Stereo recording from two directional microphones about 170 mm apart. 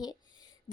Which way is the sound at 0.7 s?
25° left (ahead or behind).